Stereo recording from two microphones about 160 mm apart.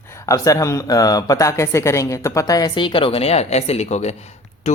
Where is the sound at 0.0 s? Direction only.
15° left (ahead or behind).